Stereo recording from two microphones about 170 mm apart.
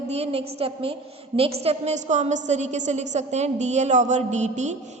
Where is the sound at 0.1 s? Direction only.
40° right (ahead or behind).